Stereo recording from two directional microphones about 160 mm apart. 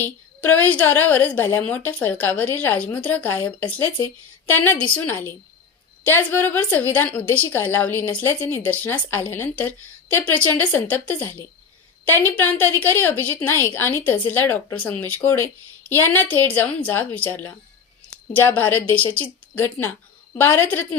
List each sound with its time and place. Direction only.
0.0 s a woman's voice: 10° left (ahead or behind)